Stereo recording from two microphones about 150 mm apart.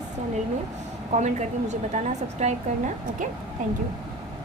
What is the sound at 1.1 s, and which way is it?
A woman's voice, 50° right (ahead or behind).